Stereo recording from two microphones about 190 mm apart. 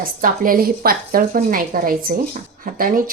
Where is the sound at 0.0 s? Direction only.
50° right (ahead or behind).